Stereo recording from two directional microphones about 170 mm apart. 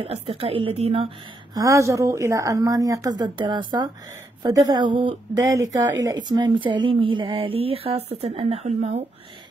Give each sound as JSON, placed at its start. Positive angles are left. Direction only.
{"t": 0.0, "sound": "speech", "side_deg": -35}
{"t": 1.5, "sound": "speech", "side_deg": -20}